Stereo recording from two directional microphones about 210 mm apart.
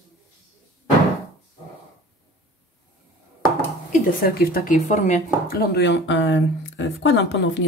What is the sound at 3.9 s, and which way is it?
Speech, 45° left (ahead or behind).